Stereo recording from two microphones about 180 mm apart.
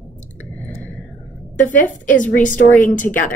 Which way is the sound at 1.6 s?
45° left (ahead or behind).